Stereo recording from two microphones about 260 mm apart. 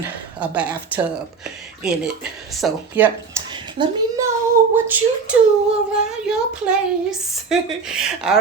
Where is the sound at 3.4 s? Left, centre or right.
Centre.